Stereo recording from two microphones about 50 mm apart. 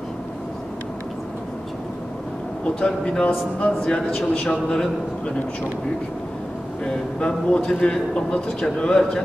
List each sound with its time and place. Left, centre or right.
2.6 s a man's voice: centre
4.3 s a man's voice: centre
6.8 s a man's voice: centre